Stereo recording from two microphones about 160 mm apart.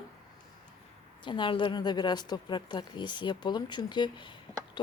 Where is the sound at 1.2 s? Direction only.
30° left (ahead or behind).